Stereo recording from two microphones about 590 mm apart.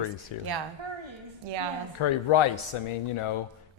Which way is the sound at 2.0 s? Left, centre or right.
Left.